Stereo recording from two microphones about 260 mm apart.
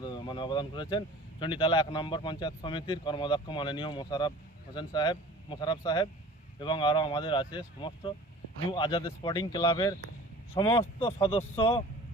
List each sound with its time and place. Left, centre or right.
0.0 s speech: centre